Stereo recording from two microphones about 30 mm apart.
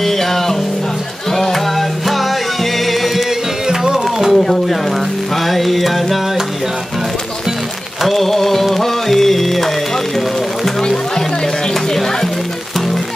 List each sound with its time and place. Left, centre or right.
0.0 s music: centre
3.6 s music: right
4.0 s a sound: centre
5.3 s music: centre
8.0 s a sound: centre
10.8 s music: centre